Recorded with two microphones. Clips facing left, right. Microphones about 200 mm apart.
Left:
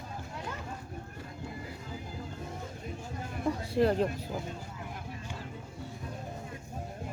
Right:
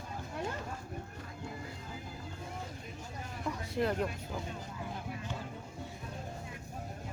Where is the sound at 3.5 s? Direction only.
30° left (ahead or behind).